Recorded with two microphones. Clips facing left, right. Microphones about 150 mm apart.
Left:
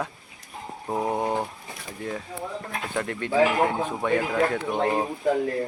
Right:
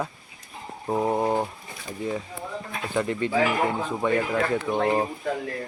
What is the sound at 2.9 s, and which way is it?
Speech, 5° right (ahead or behind).